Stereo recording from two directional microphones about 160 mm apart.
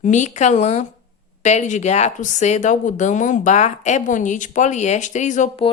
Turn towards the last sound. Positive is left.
turn(degrees=50)  # may be behind; listen again after turning